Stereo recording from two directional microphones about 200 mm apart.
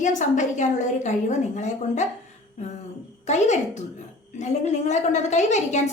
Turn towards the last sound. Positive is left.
turn(degrees=35)  # may be behind; listen again after turning